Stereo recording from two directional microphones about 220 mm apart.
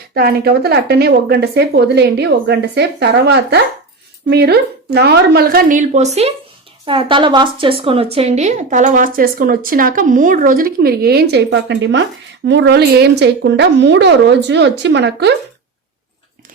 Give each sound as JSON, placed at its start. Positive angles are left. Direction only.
{"t": 0.1, "sound": "speech", "side_deg": -45}